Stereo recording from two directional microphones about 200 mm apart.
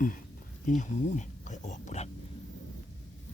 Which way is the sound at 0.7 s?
40° left (ahead or behind).